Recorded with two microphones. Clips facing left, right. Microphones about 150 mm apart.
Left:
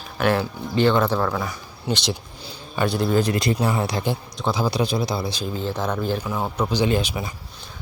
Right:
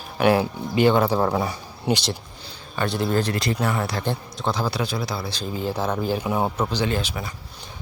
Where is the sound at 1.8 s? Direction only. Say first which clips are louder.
Right 2 dB; 10° right (ahead or behind).